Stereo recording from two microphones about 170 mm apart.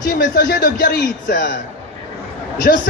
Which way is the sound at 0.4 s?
75° left (ahead or behind).